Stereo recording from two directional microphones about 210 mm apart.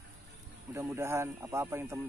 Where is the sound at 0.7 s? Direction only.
10° right (ahead or behind).